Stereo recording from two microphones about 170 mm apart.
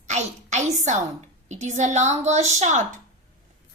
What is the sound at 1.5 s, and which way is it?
A woman's voice, 45° right (ahead or behind).